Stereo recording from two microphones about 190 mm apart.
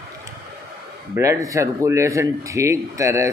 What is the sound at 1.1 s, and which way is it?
Speech, 15° right (ahead or behind).